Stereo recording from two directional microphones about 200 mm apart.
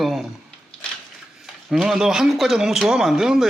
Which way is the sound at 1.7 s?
Centre (ahead or behind).